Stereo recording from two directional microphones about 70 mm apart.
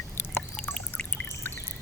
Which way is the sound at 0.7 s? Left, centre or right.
Centre.